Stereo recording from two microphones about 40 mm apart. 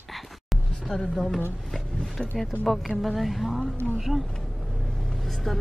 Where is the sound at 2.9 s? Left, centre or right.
Centre.